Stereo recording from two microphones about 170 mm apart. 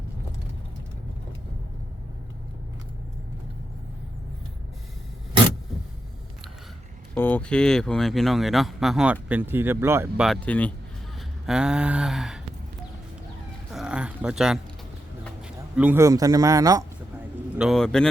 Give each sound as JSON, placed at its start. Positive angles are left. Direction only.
{"t": 7.1, "sound": "speech", "side_deg": 10}
{"t": 10.2, "sound": "speech", "side_deg": 10}
{"t": 11.4, "sound": "speech", "side_deg": -5}
{"t": 13.7, "sound": "a sound", "side_deg": -5}
{"t": 15.4, "sound": "a man's voice", "side_deg": -10}
{"t": 17.6, "sound": "speech", "side_deg": 0}